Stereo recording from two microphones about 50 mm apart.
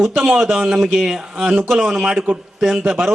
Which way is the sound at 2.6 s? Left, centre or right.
Centre.